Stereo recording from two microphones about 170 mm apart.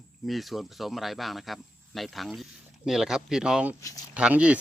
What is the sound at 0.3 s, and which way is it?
Speech, centre (ahead or behind).